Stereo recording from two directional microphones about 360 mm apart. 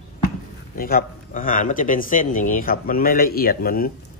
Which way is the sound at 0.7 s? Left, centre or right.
Left.